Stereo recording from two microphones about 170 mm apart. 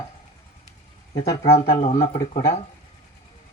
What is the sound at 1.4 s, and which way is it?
Speech, 35° left (ahead or behind).